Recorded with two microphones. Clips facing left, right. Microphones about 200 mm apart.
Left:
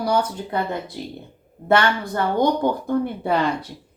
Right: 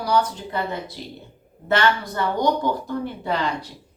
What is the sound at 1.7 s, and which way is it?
A woman's voice, 55° left (ahead or behind).